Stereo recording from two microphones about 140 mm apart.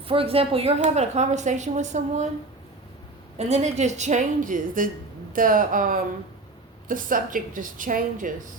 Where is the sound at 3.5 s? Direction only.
55° right (ahead or behind); by 8.3 s 75° right (ahead or behind).